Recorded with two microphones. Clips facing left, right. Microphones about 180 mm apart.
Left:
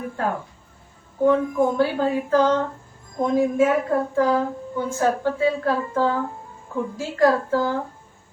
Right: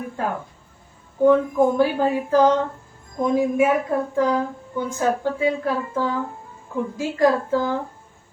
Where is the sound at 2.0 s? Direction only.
10° right (ahead or behind).